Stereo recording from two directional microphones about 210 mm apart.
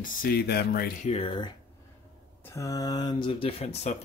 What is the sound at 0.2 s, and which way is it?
Speech, 50° left (ahead or behind).